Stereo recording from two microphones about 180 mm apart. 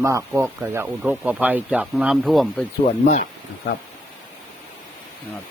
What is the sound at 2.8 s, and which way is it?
Speech, 45° left (ahead or behind).